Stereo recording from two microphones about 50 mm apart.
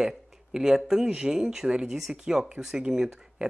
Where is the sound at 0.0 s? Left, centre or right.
Centre.